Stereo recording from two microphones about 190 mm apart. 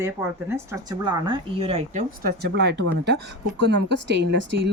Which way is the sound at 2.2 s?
60° right (ahead or behind).